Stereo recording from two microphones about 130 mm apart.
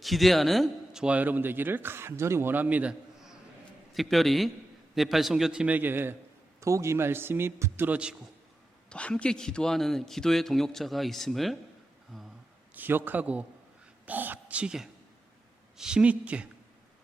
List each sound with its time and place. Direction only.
0.0 s a man's voice: centre (ahead or behind)
8.9 s a man's voice: 10° left (ahead or behind)
12.7 s a man's voice: 15° right (ahead or behind)